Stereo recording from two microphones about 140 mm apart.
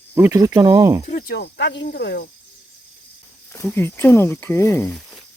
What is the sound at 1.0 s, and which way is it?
Speech, 65° left (ahead or behind).